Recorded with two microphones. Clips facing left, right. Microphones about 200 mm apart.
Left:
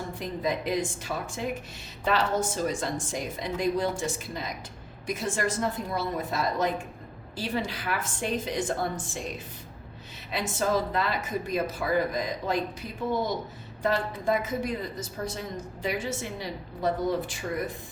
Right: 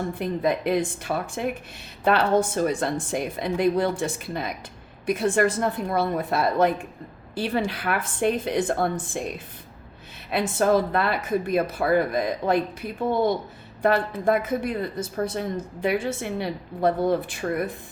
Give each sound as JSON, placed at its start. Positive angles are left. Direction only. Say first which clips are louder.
{"t": 0.1, "sound": "speech", "louder": "right 3 dB", "side_deg": -60}
{"t": 10.2, "sound": "speech", "louder": "right 7 dB", "side_deg": -60}